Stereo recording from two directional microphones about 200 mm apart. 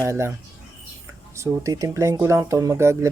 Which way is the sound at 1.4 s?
15° right (ahead or behind).